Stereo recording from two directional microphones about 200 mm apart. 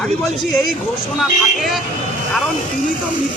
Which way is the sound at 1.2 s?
Centre (ahead or behind).